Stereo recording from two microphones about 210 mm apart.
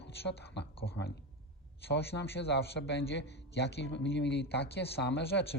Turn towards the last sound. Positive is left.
turn(degrees=55)  # may be behind; listen again after turning